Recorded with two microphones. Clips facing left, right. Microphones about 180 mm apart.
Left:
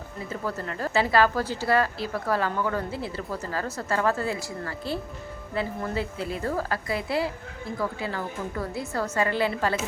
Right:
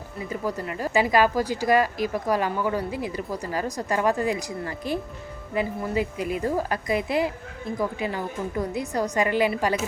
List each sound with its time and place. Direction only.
0.3 s speech: 10° right (ahead or behind)